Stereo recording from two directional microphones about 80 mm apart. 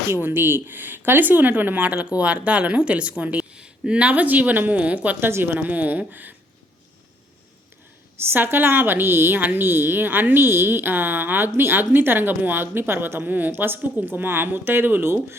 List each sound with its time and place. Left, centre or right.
0.1 s a woman's voice: right
8.3 s a woman's voice: right